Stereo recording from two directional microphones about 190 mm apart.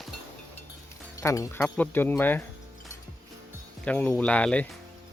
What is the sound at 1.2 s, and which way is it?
Speech, 15° left (ahead or behind).